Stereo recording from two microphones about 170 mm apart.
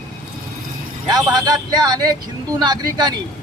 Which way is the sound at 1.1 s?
25° right (ahead or behind).